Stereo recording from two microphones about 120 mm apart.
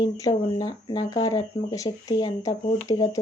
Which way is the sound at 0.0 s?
30° left (ahead or behind).